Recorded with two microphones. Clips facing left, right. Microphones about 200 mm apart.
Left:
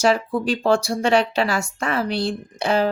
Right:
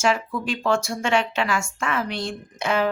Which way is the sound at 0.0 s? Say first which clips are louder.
Left 4 dB; 35° left (ahead or behind).